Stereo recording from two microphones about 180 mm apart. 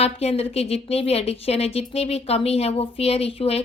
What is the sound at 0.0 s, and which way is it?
Speech, 35° left (ahead or behind).